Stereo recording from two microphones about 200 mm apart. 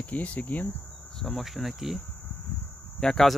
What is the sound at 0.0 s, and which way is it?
Cricket, 5° left (ahead or behind).